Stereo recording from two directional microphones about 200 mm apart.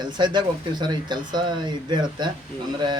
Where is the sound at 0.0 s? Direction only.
20° right (ahead or behind).